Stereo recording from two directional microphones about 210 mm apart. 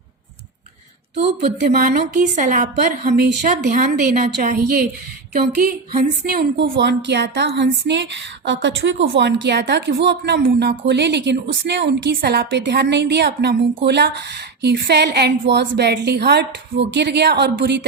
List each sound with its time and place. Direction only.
1.6 s a woman's voice: 45° right (ahead or behind)